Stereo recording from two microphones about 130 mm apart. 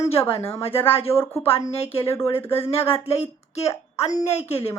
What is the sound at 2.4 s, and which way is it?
Speech, 20° left (ahead or behind).